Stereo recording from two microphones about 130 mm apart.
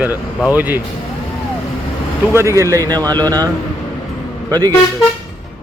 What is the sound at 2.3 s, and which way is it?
Speech, 20° right (ahead or behind).